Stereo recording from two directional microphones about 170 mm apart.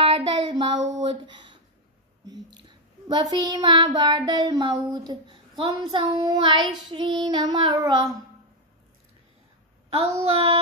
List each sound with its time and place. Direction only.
0.0 s child singing: 35° right (ahead or behind)
1.0 s speech: 25° right (ahead or behind)
2.2 s a sound: 25° right (ahead or behind)
3.1 s child singing: 25° right (ahead or behind)
9.9 s child singing: 35° right (ahead or behind)